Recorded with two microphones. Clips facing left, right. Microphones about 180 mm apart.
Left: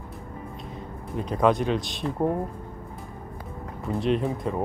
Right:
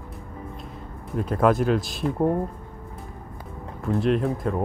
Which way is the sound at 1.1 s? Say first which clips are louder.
Right 1 dB; centre (ahead or behind).